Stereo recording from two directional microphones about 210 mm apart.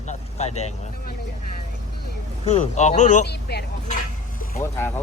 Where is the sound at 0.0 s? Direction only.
35° left (ahead or behind).